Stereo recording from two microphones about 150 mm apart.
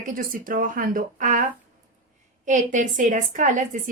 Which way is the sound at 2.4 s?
55° right (ahead or behind).